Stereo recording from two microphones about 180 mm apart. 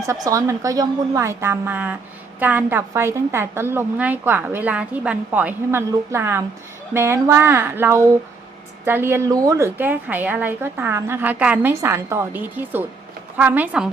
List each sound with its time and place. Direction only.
0.1 s a woman's voice: 15° right (ahead or behind)